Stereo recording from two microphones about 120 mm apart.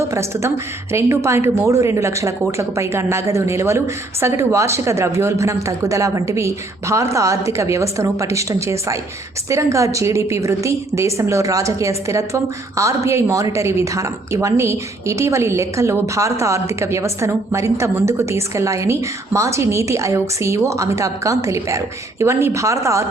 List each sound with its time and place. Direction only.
0.1 s a woman's voice: 25° right (ahead or behind)